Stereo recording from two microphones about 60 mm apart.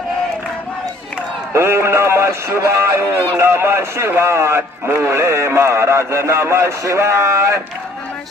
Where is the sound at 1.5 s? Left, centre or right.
Right.